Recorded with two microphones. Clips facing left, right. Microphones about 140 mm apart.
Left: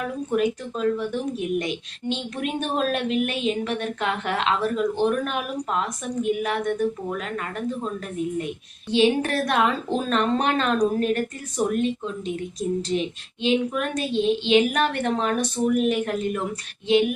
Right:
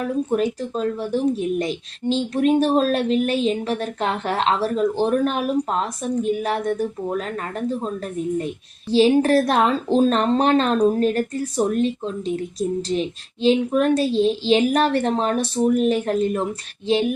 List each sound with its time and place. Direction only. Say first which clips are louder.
0.0 s a woman's voice: right 3 dB; 35° right (ahead or behind)
8.9 s a woman's voice: right 5 dB; 35° right (ahead or behind)